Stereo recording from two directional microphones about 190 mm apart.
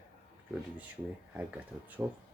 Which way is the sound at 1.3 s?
5° right (ahead or behind).